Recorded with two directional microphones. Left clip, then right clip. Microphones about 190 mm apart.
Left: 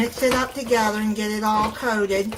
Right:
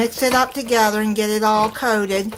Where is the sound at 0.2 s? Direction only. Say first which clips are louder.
Right 3 dB; 50° right (ahead or behind).